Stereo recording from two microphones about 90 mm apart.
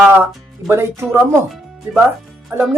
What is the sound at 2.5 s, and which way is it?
Speech, 25° right (ahead or behind).